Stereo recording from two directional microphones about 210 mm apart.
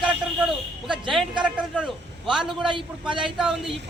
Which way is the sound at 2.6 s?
25° right (ahead or behind).